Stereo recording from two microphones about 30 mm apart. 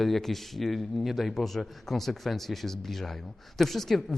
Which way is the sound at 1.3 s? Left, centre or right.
Centre.